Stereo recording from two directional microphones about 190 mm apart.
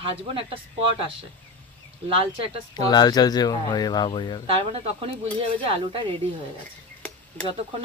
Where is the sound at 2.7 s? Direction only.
20° left (ahead or behind).